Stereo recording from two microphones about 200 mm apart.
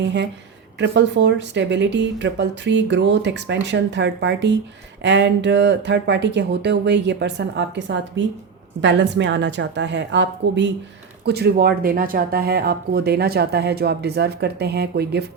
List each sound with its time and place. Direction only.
0.8 s speech: 60° right (ahead or behind)